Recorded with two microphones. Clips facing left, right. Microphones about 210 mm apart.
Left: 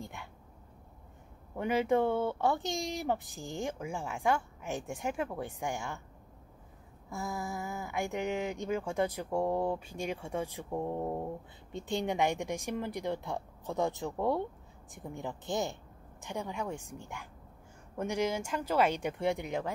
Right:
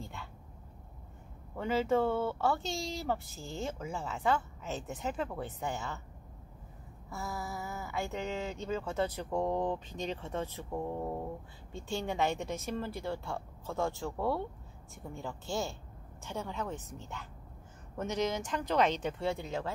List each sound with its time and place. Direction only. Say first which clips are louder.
0.0 s a sound: left 1 dB; 15° left (ahead or behind)
1.6 s speech: left 1 dB; 15° left (ahead or behind)
7.1 s speech: left 2 dB; 15° left (ahead or behind)